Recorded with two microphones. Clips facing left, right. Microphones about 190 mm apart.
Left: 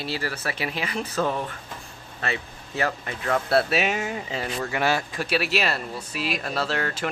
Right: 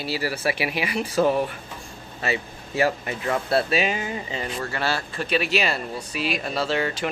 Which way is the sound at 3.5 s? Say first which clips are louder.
Even; centre (ahead or behind).